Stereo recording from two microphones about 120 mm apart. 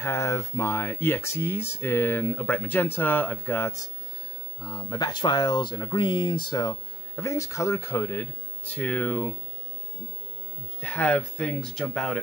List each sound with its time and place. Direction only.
0.0 s speech: 25° left (ahead or behind)
4.6 s speech: 30° left (ahead or behind); by 9.3 s 15° left (ahead or behind)
10.8 s speech: 10° left (ahead or behind)